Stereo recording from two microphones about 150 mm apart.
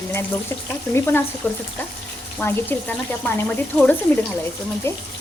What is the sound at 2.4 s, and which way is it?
Speech, 10° left (ahead or behind).